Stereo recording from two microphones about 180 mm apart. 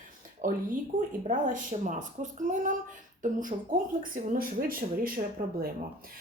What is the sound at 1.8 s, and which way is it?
Speech, 45° right (ahead or behind).